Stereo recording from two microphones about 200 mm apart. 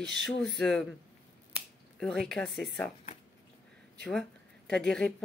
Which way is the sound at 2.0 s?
Centre (ahead or behind).